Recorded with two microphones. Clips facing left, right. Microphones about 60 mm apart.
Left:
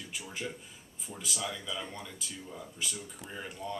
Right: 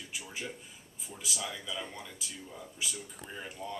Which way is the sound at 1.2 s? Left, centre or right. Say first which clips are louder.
Left 1 dB; centre.